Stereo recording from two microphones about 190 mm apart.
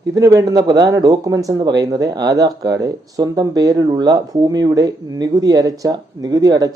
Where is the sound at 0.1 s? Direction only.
15° right (ahead or behind).